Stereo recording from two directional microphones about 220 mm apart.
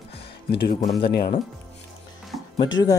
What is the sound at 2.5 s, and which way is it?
Speech, 20° left (ahead or behind).